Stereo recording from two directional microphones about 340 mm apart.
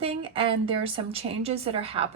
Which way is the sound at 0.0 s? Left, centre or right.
Centre.